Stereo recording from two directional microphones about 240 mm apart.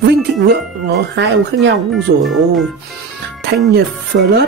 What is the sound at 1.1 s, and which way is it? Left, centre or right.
Speech, right.